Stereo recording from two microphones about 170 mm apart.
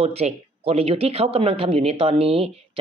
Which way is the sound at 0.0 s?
35° right (ahead or behind).